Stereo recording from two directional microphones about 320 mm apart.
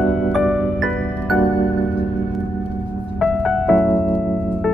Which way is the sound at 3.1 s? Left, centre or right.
Centre.